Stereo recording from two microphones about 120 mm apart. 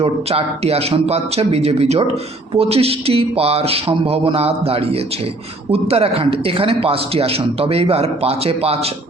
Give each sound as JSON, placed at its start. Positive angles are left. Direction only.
{"t": 0.0, "sound": "a man's voice", "side_deg": -55}